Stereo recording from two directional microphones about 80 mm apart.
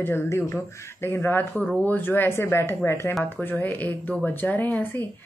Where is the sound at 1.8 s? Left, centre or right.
Left.